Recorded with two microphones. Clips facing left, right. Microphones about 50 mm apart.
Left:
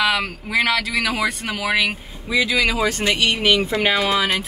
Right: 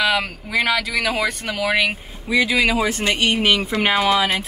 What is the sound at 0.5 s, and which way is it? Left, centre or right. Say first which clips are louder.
Speech: left 1 dB; centre.